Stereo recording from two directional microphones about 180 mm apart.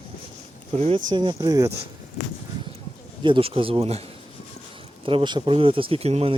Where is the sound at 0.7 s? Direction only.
35° right (ahead or behind).